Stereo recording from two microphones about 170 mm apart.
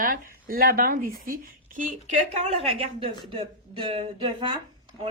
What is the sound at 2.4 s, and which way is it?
Speech, 35° right (ahead or behind).